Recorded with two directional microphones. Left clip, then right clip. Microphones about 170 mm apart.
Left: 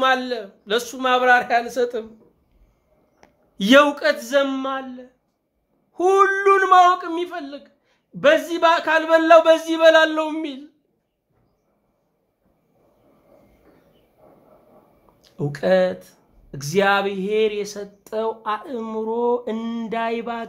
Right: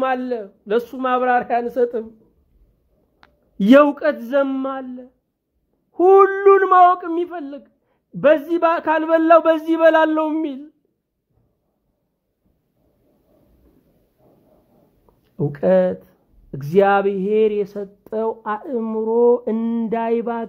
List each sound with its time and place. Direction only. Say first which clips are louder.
0.0 s speech: left 2 dB; 45° right (ahead or behind)
3.6 s a man's voice: right 1 dB; 40° right (ahead or behind)
15.3 s speech: right 2 dB; 50° right (ahead or behind)